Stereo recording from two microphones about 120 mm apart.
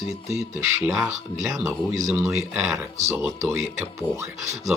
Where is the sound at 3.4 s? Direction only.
25° right (ahead or behind).